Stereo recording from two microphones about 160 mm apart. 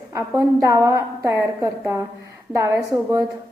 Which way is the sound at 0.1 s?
15° right (ahead or behind).